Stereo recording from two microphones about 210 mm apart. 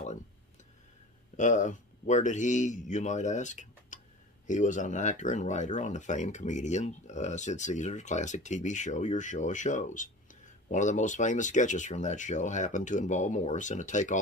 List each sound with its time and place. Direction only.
1.3 s speech: 35° left (ahead or behind)